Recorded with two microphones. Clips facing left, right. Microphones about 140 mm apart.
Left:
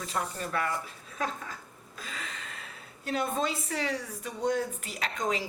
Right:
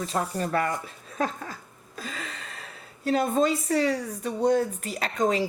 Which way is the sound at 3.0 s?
35° right (ahead or behind).